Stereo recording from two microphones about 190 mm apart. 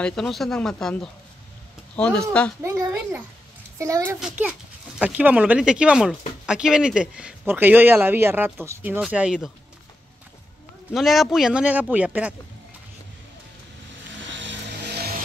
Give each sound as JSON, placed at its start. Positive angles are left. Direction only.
{"t": 0.0, "sound": "speech", "side_deg": 0}
{"t": 2.6, "sound": "a child's voice", "side_deg": -15}
{"t": 10.9, "sound": "speech", "side_deg": 0}
{"t": 14.2, "sound": "vehicle", "side_deg": -75}